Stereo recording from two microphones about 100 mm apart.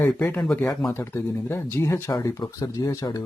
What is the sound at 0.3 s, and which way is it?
Speech, 10° left (ahead or behind).